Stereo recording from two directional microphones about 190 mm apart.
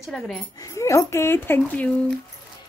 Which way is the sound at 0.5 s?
15° left (ahead or behind).